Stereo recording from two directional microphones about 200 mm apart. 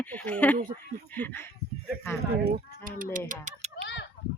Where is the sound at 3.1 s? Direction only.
40° right (ahead or behind).